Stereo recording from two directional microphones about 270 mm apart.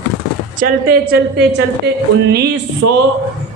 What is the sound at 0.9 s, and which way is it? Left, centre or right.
A man's voice, right.